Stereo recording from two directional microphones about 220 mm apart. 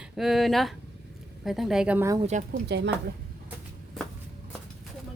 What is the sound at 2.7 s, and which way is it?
Speech, 50° right (ahead or behind).